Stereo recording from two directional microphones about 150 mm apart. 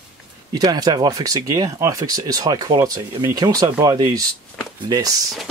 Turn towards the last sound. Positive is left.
turn(degrees=-25)  # may be behind; listen again after turning